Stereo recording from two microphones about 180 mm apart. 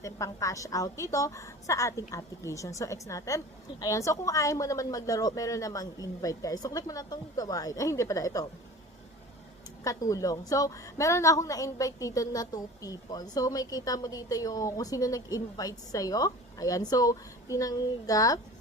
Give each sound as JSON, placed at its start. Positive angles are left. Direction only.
{"t": 0.0, "sound": "a woman's voice", "side_deg": 15}
{"t": 9.8, "sound": "a woman's voice", "side_deg": 20}